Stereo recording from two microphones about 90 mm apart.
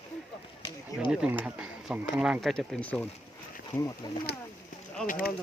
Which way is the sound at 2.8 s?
15° left (ahead or behind).